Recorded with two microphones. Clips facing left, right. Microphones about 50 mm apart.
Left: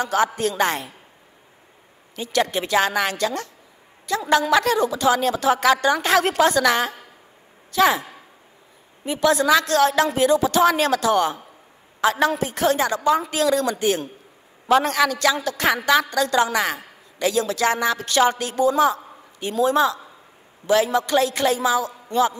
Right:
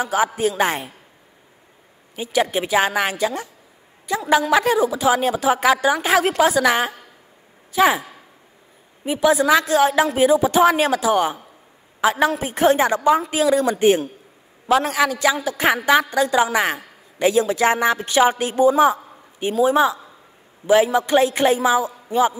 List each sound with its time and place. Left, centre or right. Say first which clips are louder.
0.0 s a woman's voice: right 1 dB; centre
2.1 s a woman's voice: right 2 dB; centre
9.0 s a woman's voice: right 2 dB; centre
14.7 s a woman's voice: even; centre